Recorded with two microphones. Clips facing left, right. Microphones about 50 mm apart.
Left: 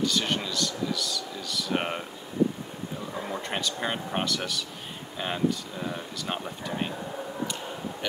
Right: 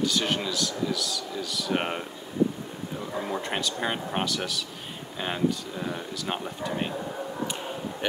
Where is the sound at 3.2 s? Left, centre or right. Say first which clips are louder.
Right 2 dB; centre.